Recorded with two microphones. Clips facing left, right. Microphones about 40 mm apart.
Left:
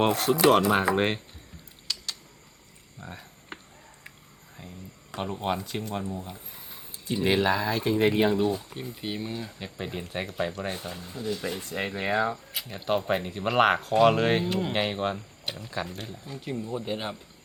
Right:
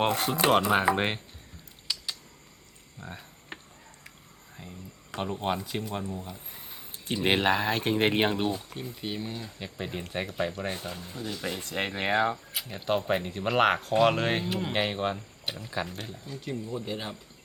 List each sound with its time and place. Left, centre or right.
0.0 s speech: centre
1.9 s a sound: centre
4.6 s speech: centre
6.9 s speech: right
8.7 s speech: centre
11.7 s speech: right
12.5 s speech: centre; by 17.2 s left